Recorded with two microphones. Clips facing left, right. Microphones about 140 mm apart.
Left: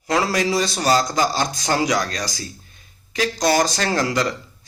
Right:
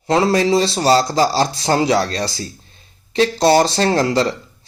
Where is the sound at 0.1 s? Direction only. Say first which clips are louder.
Right 6 dB; 25° right (ahead or behind).